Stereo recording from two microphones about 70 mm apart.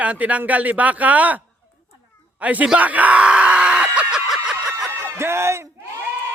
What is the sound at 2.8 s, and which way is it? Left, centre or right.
Screaming, right.